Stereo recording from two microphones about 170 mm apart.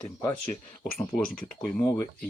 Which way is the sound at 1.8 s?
15° left (ahead or behind).